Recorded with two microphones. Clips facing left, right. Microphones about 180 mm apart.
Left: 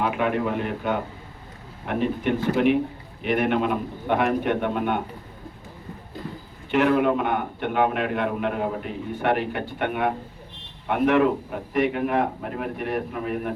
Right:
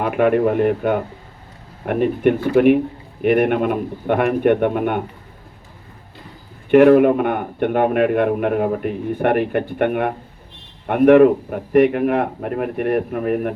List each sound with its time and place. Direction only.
0.0 s a man's voice: 55° right (ahead or behind)
6.7 s a man's voice: 55° right (ahead or behind)